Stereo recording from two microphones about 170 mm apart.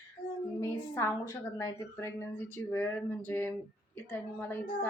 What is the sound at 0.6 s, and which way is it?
A woman's voice, 15° left (ahead or behind).